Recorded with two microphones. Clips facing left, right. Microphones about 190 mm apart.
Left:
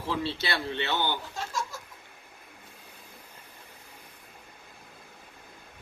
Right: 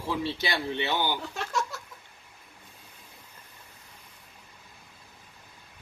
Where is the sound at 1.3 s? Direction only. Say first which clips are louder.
Right 3 dB; 70° right (ahead or behind).